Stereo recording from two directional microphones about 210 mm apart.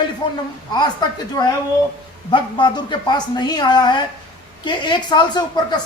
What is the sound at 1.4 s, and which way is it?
Speech, 15° left (ahead or behind).